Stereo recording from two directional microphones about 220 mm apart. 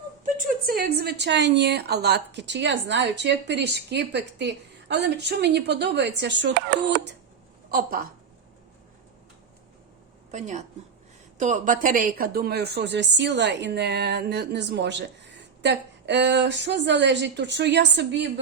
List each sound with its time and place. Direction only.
0.3 s speech: 40° right (ahead or behind)
7.7 s a woman's voice: 40° right (ahead or behind)
10.3 s a woman's voice: 30° right (ahead or behind); by 18.3 s 50° right (ahead or behind)